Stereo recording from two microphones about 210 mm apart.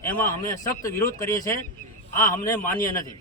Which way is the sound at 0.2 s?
40° left (ahead or behind).